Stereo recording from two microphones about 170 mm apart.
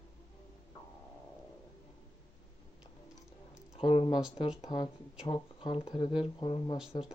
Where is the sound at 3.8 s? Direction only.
30° left (ahead or behind).